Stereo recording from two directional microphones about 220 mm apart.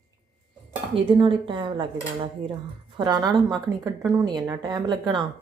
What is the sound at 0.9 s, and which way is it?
A woman's voice, 25° right (ahead or behind).